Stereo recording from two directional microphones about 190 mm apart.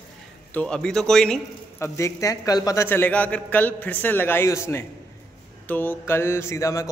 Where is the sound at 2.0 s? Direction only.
15° left (ahead or behind).